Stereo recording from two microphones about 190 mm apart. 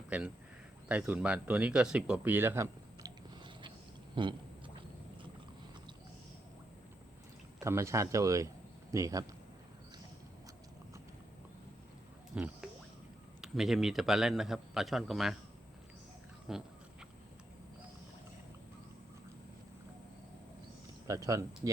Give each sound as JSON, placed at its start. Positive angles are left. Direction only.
{"t": 0.1, "sound": "speech", "side_deg": -5}
{"t": 4.1, "sound": "a sound", "side_deg": -25}
{"t": 7.6, "sound": "speech", "side_deg": -15}
{"t": 12.4, "sound": "a man's voice", "side_deg": -5}
{"t": 16.5, "sound": "a man's voice", "side_deg": 0}
{"t": 21.1, "sound": "speech", "side_deg": -15}